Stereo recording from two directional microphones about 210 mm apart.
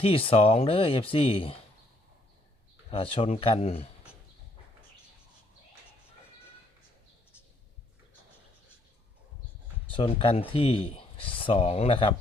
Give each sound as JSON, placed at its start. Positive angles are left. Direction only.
{"t": 0.0, "sound": "speech", "side_deg": 25}
{"t": 2.9, "sound": "speech", "side_deg": 25}
{"t": 9.9, "sound": "speech", "side_deg": 25}